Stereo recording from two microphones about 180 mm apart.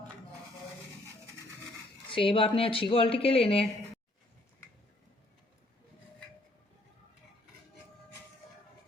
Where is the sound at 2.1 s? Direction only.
30° left (ahead or behind).